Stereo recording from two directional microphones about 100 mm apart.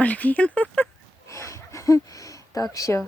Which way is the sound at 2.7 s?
35° left (ahead or behind).